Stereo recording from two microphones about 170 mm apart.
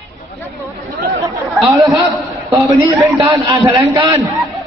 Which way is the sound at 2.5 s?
20° right (ahead or behind).